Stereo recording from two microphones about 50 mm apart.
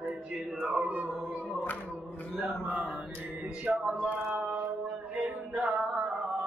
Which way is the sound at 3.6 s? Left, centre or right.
Right.